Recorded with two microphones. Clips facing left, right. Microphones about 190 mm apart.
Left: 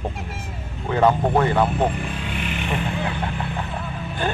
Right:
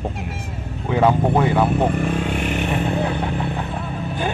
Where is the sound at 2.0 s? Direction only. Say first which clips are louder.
Right 7 dB; 45° right (ahead or behind).